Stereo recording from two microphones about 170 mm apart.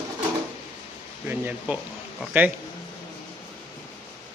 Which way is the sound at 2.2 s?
10° right (ahead or behind).